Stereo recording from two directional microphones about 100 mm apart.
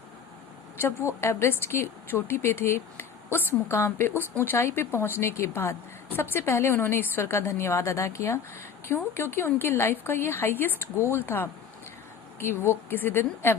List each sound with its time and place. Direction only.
0.8 s a woman's voice: 25° left (ahead or behind)